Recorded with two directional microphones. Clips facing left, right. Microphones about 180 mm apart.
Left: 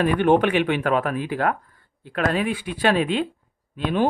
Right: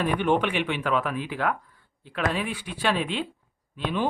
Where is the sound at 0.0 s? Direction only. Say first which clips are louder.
Left 6 dB; 50° left (ahead or behind).